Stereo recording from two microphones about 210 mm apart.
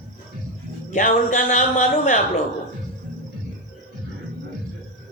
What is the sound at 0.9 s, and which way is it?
Speech, 35° left (ahead or behind).